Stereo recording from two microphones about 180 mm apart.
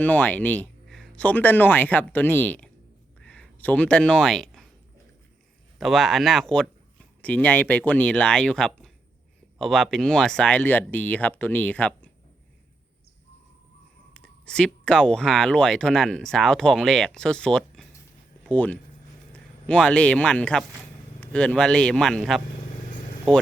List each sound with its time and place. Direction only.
0.0 s speech: 10° left (ahead or behind)
3.2 s a sound: 5° left (ahead or behind)
5.8 s speech: centre (ahead or behind)
14.1 s speech: 5° left (ahead or behind)
22.9 s vehicle: 45° left (ahead or behind)